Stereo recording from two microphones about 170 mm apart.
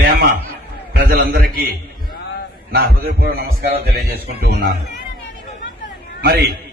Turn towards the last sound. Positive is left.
turn(degrees=-65)  # may be behind; listen again after turning